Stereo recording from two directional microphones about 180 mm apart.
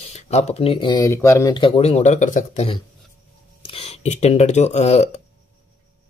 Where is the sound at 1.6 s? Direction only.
35° left (ahead or behind).